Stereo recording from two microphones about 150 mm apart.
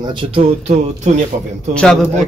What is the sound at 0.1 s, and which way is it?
Speech, 30° right (ahead or behind).